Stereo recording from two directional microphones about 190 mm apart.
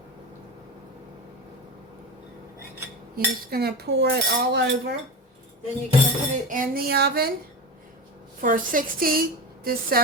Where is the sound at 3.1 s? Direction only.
55° right (ahead or behind).